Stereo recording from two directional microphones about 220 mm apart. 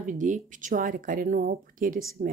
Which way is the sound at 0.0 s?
35° right (ahead or behind).